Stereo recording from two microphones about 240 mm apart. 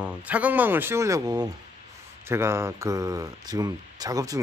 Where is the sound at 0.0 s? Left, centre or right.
Centre.